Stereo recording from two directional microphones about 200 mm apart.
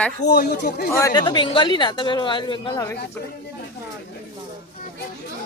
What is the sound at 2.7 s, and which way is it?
Speech, 10° left (ahead or behind).